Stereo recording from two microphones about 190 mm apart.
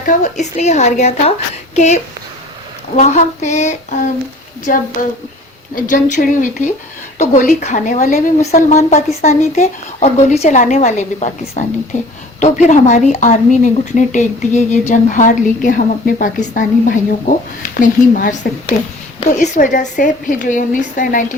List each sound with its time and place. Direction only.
0.0 s a woman's voice: 40° left (ahead or behind)